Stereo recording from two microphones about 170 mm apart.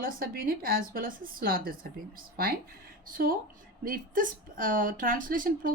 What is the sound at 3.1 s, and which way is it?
Speech, 55° right (ahead or behind).